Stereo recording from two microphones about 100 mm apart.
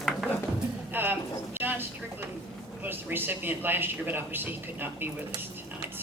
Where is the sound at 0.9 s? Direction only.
20° right (ahead or behind).